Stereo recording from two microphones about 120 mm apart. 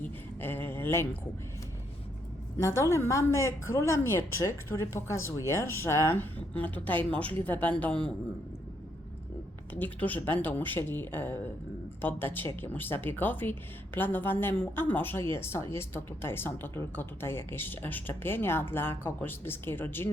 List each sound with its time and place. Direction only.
0.3 s speech: 15° left (ahead or behind)
2.6 s a woman's voice: 25° left (ahead or behind)
9.7 s speech: 15° left (ahead or behind)